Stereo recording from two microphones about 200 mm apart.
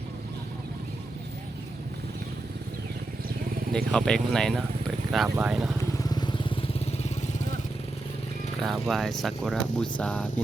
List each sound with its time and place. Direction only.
3.7 s speech: 5° left (ahead or behind)
6.0 s vehicle: 20° left (ahead or behind)
8.6 s speech: centre (ahead or behind)